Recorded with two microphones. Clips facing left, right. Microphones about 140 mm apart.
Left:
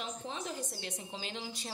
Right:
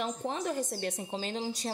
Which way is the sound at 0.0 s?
50° right (ahead or behind).